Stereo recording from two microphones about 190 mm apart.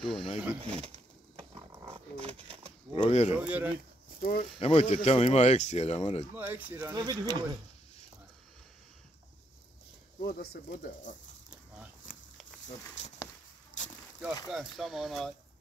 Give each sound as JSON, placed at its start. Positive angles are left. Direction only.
{"t": 0.0, "sound": "speech", "side_deg": 0}
{"t": 0.6, "sound": "pigeon", "side_deg": -30}
{"t": 2.9, "sound": "speech", "side_deg": 30}
{"t": 3.3, "sound": "speech", "side_deg": -5}
{"t": 4.2, "sound": "speech", "side_deg": 50}
{"t": 4.6, "sound": "speech", "side_deg": 35}
{"t": 6.3, "sound": "speech", "side_deg": -10}
{"t": 10.2, "sound": "speech", "side_deg": 55}
{"t": 12.1, "sound": "a sound", "side_deg": 45}
{"t": 13.0, "sound": "speech", "side_deg": 40}
{"t": 13.8, "sound": "a sound", "side_deg": 40}
{"t": 14.5, "sound": "speech", "side_deg": 0}